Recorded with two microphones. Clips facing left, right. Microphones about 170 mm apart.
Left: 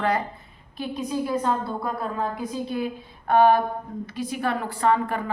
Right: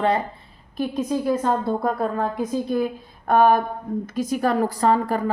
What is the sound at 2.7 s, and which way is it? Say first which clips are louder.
A woman's voice: right 5 dB; 45° right (ahead or behind).